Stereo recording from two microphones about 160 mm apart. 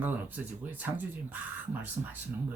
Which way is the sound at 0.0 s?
10° right (ahead or behind).